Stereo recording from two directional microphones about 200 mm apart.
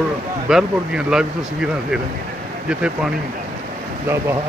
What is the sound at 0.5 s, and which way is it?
Speech, 5° right (ahead or behind).